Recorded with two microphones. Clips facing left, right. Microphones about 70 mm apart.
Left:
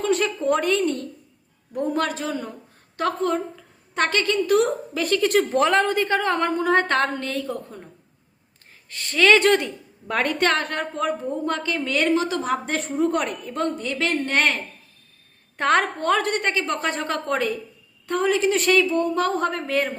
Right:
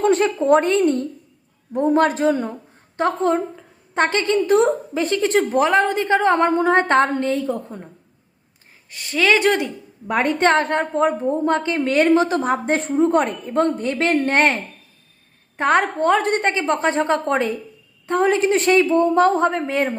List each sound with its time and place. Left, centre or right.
0.0 s a woman's voice: right
5.5 s a woman's voice: centre
5.8 s a woman's voice: right
8.9 s a woman's voice: centre; by 14.6 s right
15.5 s a woman's voice: centre